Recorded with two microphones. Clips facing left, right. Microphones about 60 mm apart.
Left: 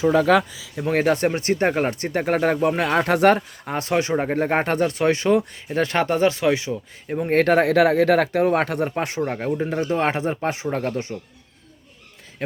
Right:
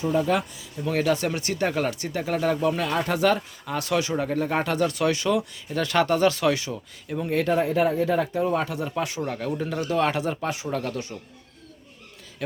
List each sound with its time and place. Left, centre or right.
0.0 s speech: left
0.9 s speech: left
7.3 s speech: left